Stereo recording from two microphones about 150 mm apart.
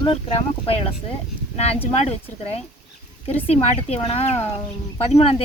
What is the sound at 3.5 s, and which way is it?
Speech, 40° left (ahead or behind).